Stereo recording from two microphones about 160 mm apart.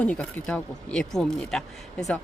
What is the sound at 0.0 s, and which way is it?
Speech, 10° left (ahead or behind).